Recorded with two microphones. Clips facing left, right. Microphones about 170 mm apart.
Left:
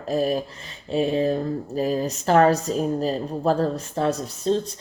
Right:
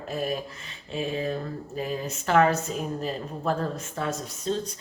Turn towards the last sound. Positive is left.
turn(degrees=35)  # may be behind; listen again after turning